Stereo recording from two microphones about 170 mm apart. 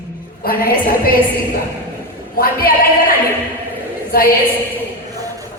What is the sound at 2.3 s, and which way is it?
A woman's voice, 60° left (ahead or behind).